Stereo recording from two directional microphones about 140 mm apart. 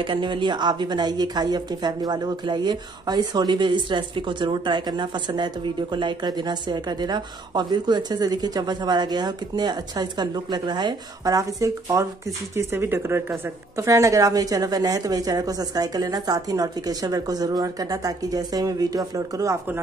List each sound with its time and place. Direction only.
0.0 s a woman's voice: 35° right (ahead or behind)